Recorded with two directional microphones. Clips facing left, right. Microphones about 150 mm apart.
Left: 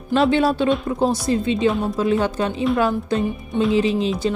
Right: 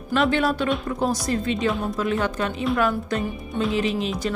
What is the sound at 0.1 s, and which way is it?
Speech, 30° left (ahead or behind).